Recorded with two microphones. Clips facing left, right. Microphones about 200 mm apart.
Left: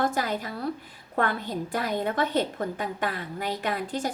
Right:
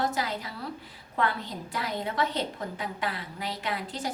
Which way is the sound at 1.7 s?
50° left (ahead or behind).